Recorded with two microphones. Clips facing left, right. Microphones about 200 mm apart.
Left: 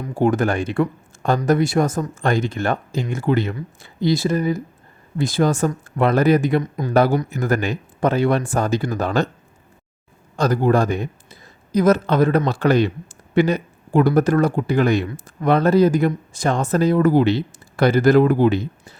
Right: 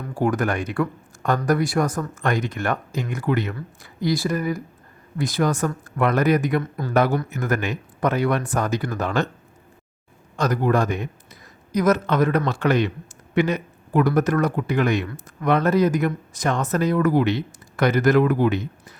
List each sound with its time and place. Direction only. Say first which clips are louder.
0.0 s speech: left 4 dB; 25° left (ahead or behind)
6.6 s speech: left 3 dB; 15° left (ahead or behind)
6.9 s speech: left 3 dB; 30° left (ahead or behind)
10.3 s speech: left 3 dB; 30° left (ahead or behind)